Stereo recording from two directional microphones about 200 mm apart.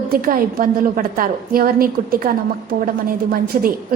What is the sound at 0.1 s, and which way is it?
A woman's voice, 45° right (ahead or behind).